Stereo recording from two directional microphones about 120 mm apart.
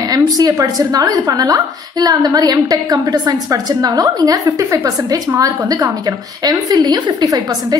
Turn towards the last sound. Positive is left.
turn(degrees=-30)  # may be behind; listen again after turning